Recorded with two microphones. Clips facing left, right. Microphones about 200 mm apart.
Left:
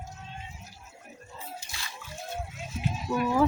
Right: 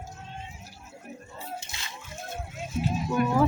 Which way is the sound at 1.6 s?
25° right (ahead or behind).